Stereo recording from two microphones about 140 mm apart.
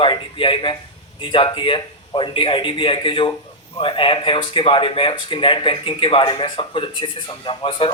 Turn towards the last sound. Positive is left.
turn(degrees=40)  # may be behind; listen again after turning